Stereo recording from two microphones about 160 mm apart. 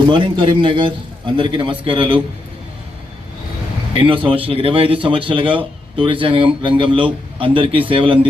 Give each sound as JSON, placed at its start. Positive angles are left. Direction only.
{"t": 0.1, "sound": "speech", "side_deg": -30}
{"t": 3.9, "sound": "speech", "side_deg": -35}